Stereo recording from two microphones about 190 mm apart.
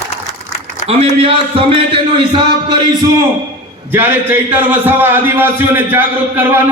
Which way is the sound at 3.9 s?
10° right (ahead or behind).